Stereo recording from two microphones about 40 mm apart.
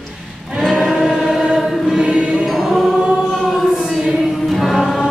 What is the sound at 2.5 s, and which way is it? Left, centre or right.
Choir, centre.